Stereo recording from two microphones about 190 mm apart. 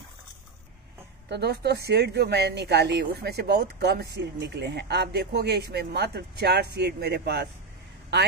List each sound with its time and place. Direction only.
1.3 s a woman's voice: 60° right (ahead or behind)